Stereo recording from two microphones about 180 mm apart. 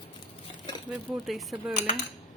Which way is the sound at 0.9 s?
Centre (ahead or behind).